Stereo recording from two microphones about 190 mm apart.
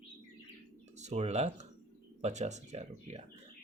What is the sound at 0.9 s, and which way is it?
Speech, 35° right (ahead or behind).